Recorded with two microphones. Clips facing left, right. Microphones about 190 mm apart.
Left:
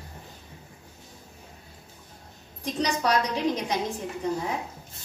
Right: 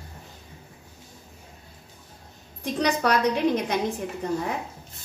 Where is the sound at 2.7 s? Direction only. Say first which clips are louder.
Right 2 dB; 60° right (ahead or behind).